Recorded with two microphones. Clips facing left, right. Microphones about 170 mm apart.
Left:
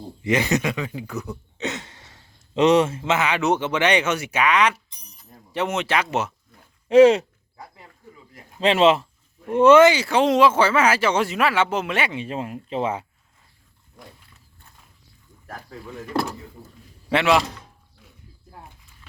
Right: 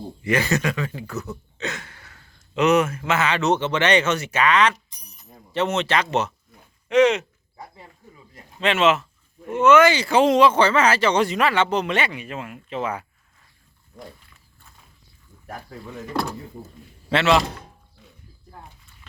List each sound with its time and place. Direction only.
0.2 s speech: 20° left (ahead or behind)
6.8 s speech: 35° left (ahead or behind)
8.6 s speech: 30° left (ahead or behind)
9.9 s speech: 5° left (ahead or behind)
12.1 s speech: 30° left (ahead or behind)
17.1 s speech: 10° left (ahead or behind)